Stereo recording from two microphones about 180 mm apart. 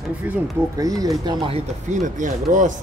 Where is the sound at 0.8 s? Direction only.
20° right (ahead or behind).